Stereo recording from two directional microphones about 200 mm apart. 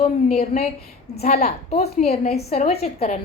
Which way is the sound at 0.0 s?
30° left (ahead or behind).